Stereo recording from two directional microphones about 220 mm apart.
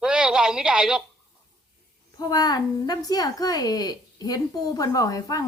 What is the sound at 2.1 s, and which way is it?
A woman's voice, 15° left (ahead or behind).